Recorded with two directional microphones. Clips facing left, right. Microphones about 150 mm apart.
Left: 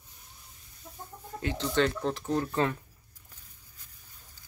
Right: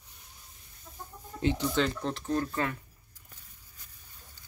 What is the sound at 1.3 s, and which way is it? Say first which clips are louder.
Chicken: right 5 dB; 40° left (ahead or behind).